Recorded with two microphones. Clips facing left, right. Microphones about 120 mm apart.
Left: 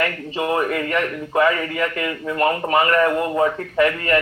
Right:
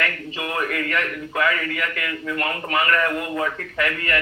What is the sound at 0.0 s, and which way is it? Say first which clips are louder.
A man's voice: left 5 dB; 30° left (ahead or behind).